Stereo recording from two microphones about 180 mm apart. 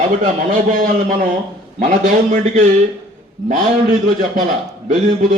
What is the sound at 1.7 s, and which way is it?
Speech, 45° right (ahead or behind).